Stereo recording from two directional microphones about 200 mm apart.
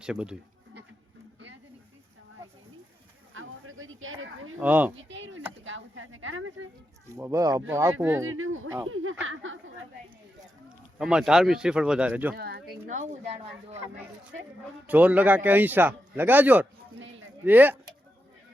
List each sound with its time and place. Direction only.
0.0 s speech: 5° right (ahead or behind)
3.3 s a sound: 85° right
4.6 s a man's voice: 10° right (ahead or behind)
4.9 s a sound: 65° right (ahead or behind)
5.6 s a sound: 75° right (ahead or behind)
7.1 s a man's voice: 15° right (ahead or behind)
8.2 s speech: 85° right
9.2 s speech: 80° right
10.7 s speech: 5° right (ahead or behind)
12.4 s speech: 55° right (ahead or behind)
12.9 s speech: 35° right (ahead or behind)
14.8 s a man's voice: 10° right (ahead or behind)